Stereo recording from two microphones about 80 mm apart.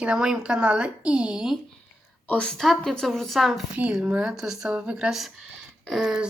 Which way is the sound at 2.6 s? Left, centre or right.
Centre.